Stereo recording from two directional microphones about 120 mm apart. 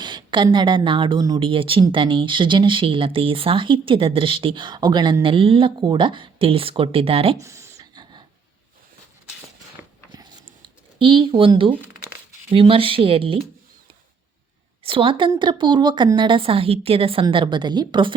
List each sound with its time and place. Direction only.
0.0 s a woman's voice: 40° right (ahead or behind)
7.3 s a sound: 25° right (ahead or behind)
9.8 s a sound: 10° right (ahead or behind)
11.0 s speech: 45° right (ahead or behind)
14.8 s a woman's voice: 45° right (ahead or behind)
17.2 s a woman's voice: 40° right (ahead or behind)